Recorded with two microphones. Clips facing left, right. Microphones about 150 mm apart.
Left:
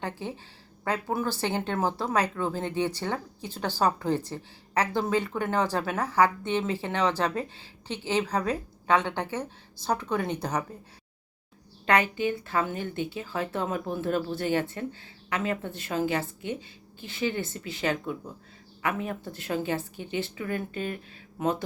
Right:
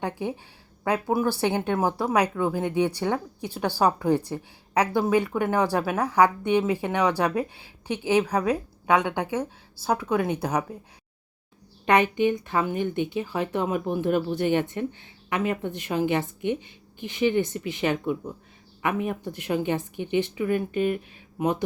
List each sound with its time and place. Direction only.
0.0 s speech: 15° right (ahead or behind)
12.1 s speech: 20° right (ahead or behind)